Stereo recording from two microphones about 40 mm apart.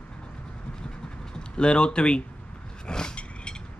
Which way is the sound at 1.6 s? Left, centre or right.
Left.